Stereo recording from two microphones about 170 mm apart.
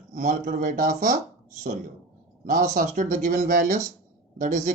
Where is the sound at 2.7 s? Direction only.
50° right (ahead or behind).